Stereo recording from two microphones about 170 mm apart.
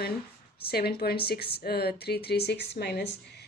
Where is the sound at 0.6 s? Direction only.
70° left (ahead or behind).